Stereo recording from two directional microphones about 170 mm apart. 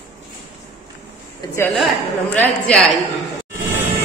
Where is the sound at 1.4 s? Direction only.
25° left (ahead or behind).